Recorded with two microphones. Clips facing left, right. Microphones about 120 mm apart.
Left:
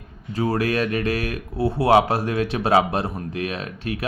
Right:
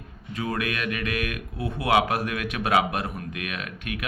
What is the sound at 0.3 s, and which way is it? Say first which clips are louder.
Speech: left 7 dB; 35° left (ahead or behind).